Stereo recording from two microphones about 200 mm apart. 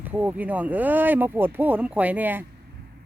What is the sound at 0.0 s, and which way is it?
Speech, 10° right (ahead or behind).